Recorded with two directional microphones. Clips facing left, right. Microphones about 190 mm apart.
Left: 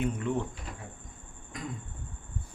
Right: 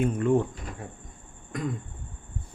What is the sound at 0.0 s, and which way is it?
Speech, 50° right (ahead or behind).